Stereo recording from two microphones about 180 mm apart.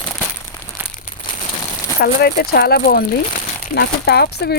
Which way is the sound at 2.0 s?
60° left (ahead or behind).